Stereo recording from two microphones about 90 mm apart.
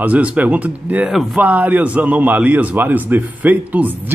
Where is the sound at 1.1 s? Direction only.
5° right (ahead or behind).